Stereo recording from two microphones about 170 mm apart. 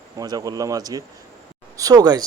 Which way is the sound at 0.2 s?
20° right (ahead or behind).